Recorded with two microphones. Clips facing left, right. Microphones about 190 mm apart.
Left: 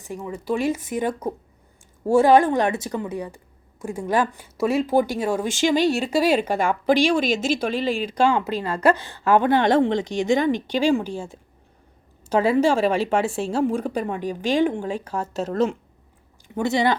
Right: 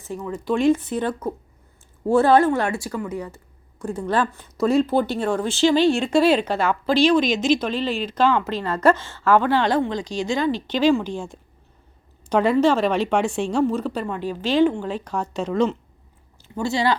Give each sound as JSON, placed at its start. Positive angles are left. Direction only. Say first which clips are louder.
{"t": 0.0, "sound": "speech", "louder": "right 2 dB", "side_deg": 15}
{"t": 16.6, "sound": "speech", "louder": "left 1 dB", "side_deg": 20}